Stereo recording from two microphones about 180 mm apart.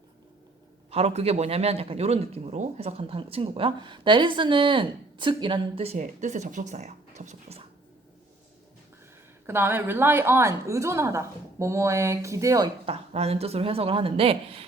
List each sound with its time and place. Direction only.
0.9 s a man's voice: 35° right (ahead or behind)
9.5 s a woman's voice: 10° right (ahead or behind)
12.8 s a man's voice: 35° right (ahead or behind)